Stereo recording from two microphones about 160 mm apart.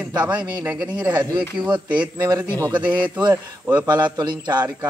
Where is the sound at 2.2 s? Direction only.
25° right (ahead or behind).